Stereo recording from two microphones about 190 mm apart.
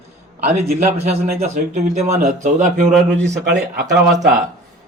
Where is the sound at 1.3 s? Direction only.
40° right (ahead or behind).